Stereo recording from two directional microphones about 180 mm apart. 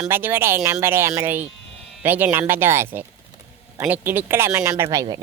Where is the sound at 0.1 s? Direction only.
10° right (ahead or behind).